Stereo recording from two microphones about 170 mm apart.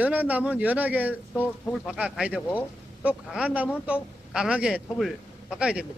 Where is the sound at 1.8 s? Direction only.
5° right (ahead or behind).